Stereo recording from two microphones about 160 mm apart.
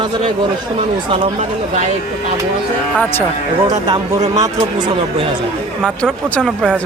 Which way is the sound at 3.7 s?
25° right (ahead or behind).